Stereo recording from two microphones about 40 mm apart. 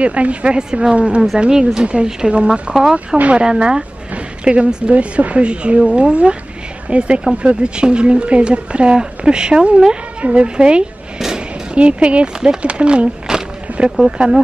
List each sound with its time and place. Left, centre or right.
0.0 s speech: right
0.6 s speech: centre
0.9 s speech: right
1.5 s speech: centre
2.7 s speech: centre
11.1 s a sound: centre
11.7 s speech: right
12.6 s a sound: right
14.0 s speech: right